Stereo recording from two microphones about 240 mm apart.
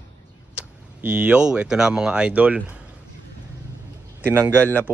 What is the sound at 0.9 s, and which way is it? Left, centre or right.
A man's voice, centre.